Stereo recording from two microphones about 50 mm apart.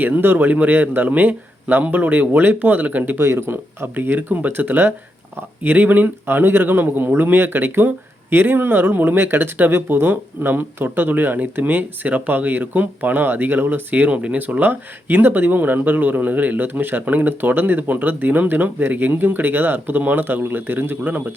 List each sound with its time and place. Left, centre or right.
0.0 s speech: right
3.2 s speech: right
3.9 s speech: right